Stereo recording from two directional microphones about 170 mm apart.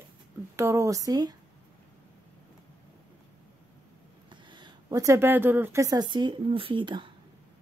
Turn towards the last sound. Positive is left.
turn(degrees=-30)  # may be behind; listen again after turning